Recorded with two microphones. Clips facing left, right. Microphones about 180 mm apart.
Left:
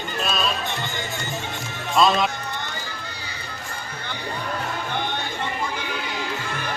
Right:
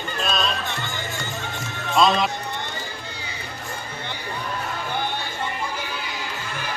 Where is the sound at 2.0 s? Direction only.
Centre (ahead or behind).